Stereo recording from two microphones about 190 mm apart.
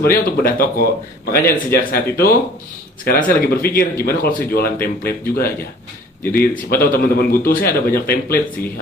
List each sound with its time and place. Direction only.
0.0 s speech: 50° left (ahead or behind)